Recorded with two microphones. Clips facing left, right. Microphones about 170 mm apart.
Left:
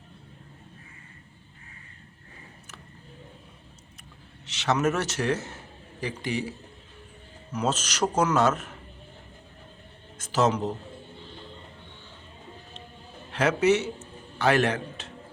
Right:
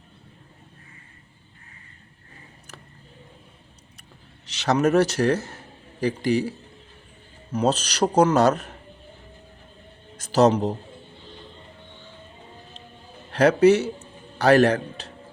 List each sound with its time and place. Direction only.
4.4 s speech: 35° right (ahead or behind)
7.5 s speech: 35° right (ahead or behind)
10.2 s speech: 35° right (ahead or behind)
13.3 s a man's voice: 35° right (ahead or behind)